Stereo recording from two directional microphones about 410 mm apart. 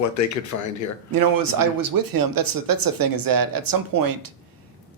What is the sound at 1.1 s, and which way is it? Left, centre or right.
Speech, right.